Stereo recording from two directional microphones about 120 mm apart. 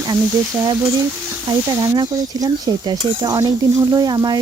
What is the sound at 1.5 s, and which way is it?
Stir, 30° right (ahead or behind).